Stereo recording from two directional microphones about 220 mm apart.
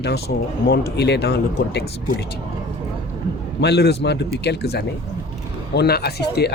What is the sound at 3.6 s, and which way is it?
Speech, 50° left (ahead or behind).